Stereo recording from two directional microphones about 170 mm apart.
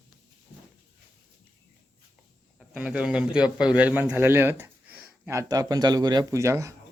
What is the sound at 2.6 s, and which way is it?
A man's voice, 5° right (ahead or behind).